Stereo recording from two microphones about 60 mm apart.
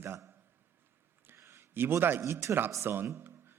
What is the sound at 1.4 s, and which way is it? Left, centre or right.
A man's voice, right.